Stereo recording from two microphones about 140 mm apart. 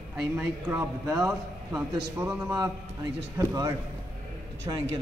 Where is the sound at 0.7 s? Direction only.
20° right (ahead or behind).